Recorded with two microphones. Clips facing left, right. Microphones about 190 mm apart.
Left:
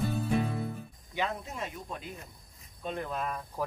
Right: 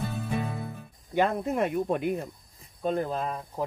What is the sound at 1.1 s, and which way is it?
Speech, 55° right (ahead or behind).